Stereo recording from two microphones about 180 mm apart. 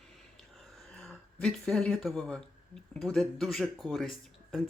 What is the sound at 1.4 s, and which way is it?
Speech, 5° left (ahead or behind).